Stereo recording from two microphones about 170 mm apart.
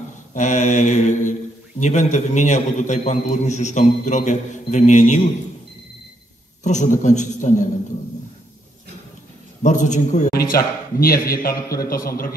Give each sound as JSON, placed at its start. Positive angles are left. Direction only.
{"t": 0.3, "sound": "a man's voice", "side_deg": 45}
{"t": 6.6, "sound": "a man's voice", "side_deg": 45}
{"t": 9.6, "sound": "a man's voice", "side_deg": 45}
{"t": 10.3, "sound": "a man's voice", "side_deg": 60}